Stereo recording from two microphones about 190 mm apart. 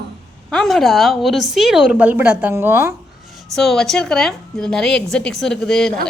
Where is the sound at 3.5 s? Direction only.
Centre (ahead or behind).